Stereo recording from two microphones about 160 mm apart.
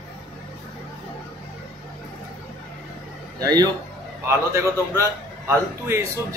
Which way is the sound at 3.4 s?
25° right (ahead or behind).